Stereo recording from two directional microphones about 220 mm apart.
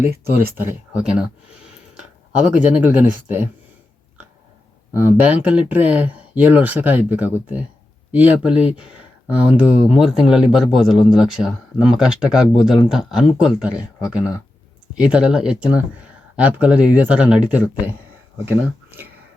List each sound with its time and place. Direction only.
0.3 s speech: 45° right (ahead or behind)
0.5 s speech: 10° right (ahead or behind)
2.7 s speech: 5° right (ahead or behind)
5.0 s speech: 5° right (ahead or behind)
14.9 s speech: 5° right (ahead or behind)